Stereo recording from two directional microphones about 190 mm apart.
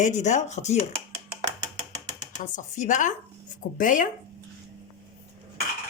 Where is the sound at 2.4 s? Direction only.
40° left (ahead or behind).